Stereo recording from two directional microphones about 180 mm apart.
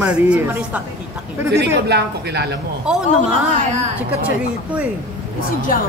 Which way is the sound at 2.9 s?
5° right (ahead or behind).